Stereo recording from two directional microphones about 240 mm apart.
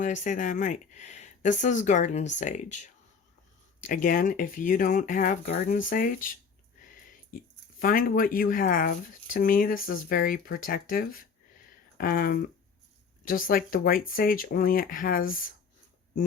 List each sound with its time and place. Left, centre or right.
0.0 s speech: left
7.8 s speech: left